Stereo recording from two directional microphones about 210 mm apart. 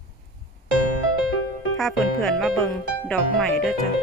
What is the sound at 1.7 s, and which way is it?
Speech, centre (ahead or behind).